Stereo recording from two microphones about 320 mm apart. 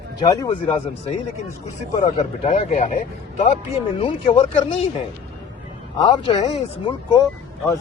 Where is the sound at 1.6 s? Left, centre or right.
Left.